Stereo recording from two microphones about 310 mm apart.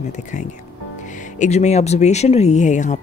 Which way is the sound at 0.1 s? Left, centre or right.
Left.